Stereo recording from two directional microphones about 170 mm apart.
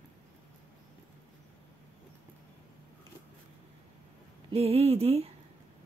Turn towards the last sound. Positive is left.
turn(degrees=-35)  # may be behind; listen again after turning